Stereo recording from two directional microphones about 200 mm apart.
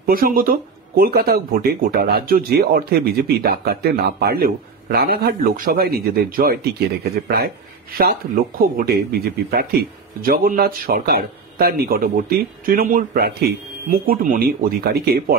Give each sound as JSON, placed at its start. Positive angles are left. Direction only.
{"t": 0.0, "sound": "speech", "side_deg": -45}